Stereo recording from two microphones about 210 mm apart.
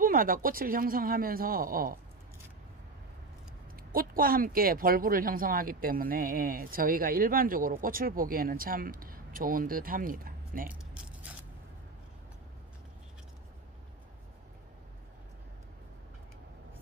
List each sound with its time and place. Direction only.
0.0 s speech: 45° right (ahead or behind)
3.9 s speech: 45° right (ahead or behind)